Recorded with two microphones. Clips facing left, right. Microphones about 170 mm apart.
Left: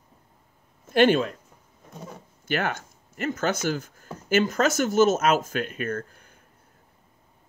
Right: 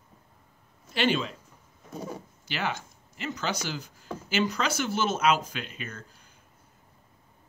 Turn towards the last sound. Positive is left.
turn(degrees=55)  # may be behind; listen again after turning